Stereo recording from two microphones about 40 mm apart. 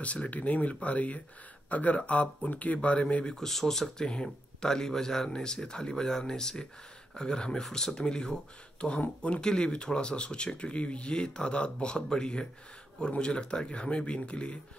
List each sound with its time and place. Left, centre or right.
0.0 s speech: left
3.3 s speech: centre
4.1 s speech: left
9.4 s speech: centre